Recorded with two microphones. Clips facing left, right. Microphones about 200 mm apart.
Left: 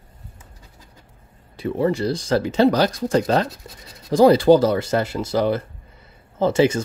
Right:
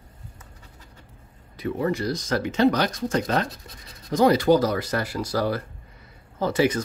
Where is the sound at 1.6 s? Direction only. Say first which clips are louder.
Left 4 dB; 30° left (ahead or behind).